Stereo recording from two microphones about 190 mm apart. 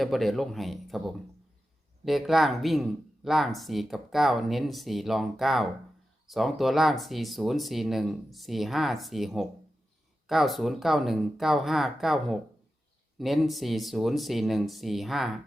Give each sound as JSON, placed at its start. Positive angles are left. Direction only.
{"t": 0.0, "sound": "speech", "side_deg": 0}